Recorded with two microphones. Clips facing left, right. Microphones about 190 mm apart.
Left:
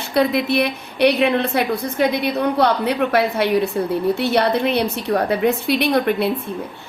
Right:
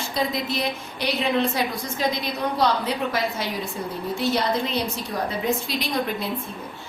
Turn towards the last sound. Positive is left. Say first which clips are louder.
# left 8 dB
turn(degrees=65)  # may be behind; listen again after turning